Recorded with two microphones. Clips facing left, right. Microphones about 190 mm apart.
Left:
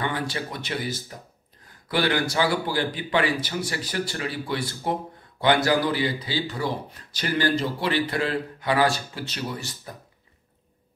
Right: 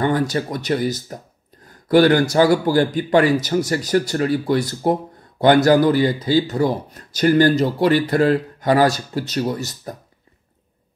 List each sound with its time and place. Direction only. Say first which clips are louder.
0.0 s speech: right 9 dB; 45° right (ahead or behind)